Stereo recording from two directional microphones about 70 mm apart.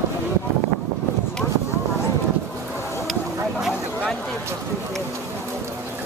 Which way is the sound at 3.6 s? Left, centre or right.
Centre.